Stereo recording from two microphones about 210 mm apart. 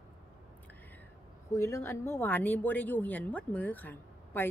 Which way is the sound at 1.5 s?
15° left (ahead or behind).